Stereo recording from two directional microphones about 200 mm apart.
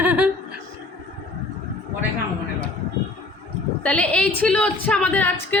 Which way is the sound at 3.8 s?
5° left (ahead or behind).